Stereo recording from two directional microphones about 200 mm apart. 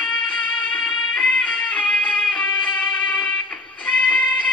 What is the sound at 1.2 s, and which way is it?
Music, 5° left (ahead or behind).